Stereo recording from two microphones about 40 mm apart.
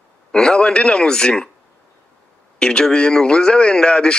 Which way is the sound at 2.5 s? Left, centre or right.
Centre.